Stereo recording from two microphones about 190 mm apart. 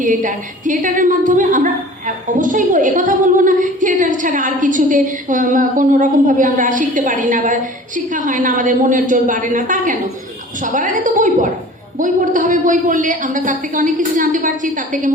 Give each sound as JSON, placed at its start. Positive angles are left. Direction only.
{"t": 0.0, "sound": "a woman's voice", "side_deg": -45}